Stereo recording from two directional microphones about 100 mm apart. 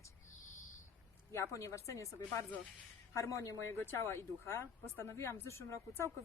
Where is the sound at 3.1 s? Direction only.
30° left (ahead or behind).